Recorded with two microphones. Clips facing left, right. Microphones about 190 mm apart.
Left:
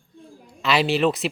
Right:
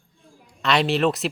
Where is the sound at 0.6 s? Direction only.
Centre (ahead or behind).